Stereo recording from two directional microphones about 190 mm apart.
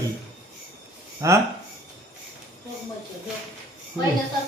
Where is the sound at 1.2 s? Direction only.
15° right (ahead or behind).